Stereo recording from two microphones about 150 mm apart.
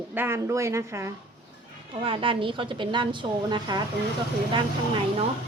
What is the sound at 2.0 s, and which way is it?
A woman's voice, 35° right (ahead or behind).